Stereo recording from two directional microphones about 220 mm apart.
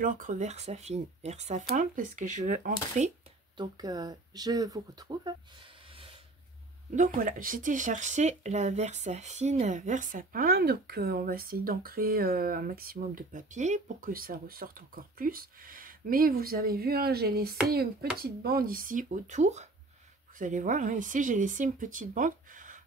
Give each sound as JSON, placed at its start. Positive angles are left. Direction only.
{"t": 0.0, "sound": "speech", "side_deg": -35}
{"t": 3.5, "sound": "speech", "side_deg": -15}
{"t": 7.2, "sound": "speech", "side_deg": -40}